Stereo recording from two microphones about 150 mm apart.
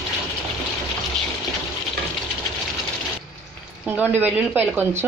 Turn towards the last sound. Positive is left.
turn(degrees=-10)  # may be behind; listen again after turning